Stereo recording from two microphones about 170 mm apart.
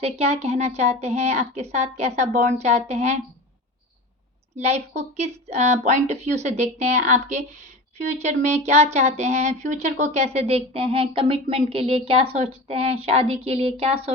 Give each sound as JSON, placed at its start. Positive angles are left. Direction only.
{"t": 0.0, "sound": "speech", "side_deg": -40}
{"t": 4.6, "sound": "speech", "side_deg": -40}